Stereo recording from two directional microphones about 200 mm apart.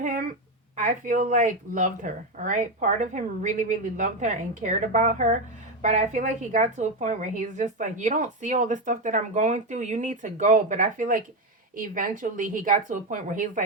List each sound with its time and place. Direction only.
0.8 s a woman's voice: 40° right (ahead or behind)